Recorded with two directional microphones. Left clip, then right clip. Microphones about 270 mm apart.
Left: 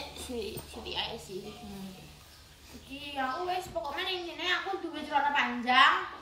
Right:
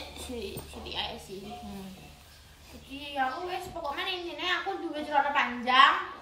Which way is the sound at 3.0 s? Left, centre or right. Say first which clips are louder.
Right 2 dB; centre.